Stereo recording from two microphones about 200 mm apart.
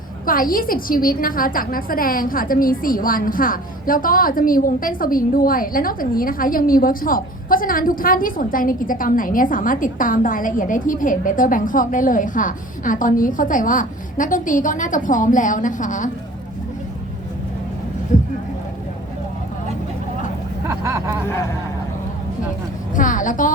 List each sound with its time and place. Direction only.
0.3 s a woman's voice: 45° left (ahead or behind)
18.1 s a sound: 40° left (ahead or behind)
20.7 s speech: 15° right (ahead or behind)
23.0 s speech: 40° left (ahead or behind)